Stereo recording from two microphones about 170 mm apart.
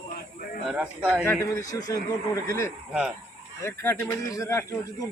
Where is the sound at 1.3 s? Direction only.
20° left (ahead or behind).